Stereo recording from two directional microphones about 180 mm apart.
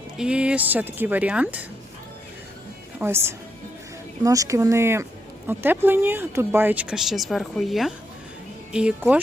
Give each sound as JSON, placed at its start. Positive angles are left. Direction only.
{"t": 0.2, "sound": "speech", "side_deg": -5}
{"t": 3.0, "sound": "speech", "side_deg": -15}